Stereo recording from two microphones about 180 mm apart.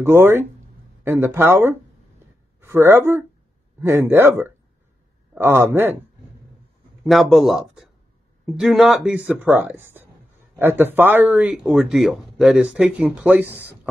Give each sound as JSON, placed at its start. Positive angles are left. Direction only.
{"t": 0.0, "sound": "speech", "side_deg": -15}
{"t": 7.0, "sound": "a man's voice", "side_deg": 0}